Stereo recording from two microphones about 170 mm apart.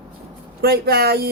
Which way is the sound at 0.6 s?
70° right (ahead or behind).